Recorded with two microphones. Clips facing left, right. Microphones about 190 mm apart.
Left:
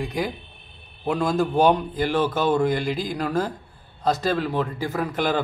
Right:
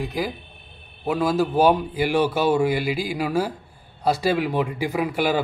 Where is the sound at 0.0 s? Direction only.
Centre (ahead or behind).